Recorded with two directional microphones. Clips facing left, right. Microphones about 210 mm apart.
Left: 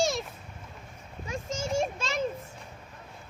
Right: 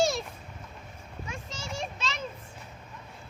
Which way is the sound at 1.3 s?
45° left (ahead or behind).